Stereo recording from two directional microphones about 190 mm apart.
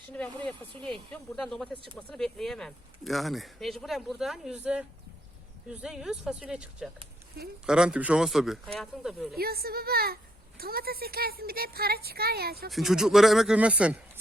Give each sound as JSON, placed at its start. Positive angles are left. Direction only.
{"t": 1.1, "sound": "speech", "side_deg": 5}
{"t": 9.4, "sound": "speech", "side_deg": -55}
{"t": 12.7, "sound": "speech", "side_deg": 0}